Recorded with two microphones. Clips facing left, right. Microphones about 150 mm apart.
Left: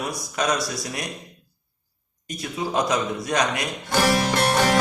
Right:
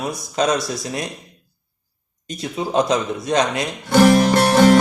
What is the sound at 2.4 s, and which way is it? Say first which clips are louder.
Speech: right 5 dB; 25° right (ahead or behind).